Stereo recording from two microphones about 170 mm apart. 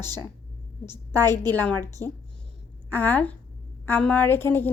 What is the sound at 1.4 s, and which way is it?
A woman's voice, 10° left (ahead or behind).